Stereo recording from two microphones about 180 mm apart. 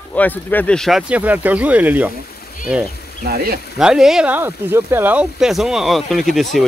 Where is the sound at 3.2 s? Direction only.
55° right (ahead or behind).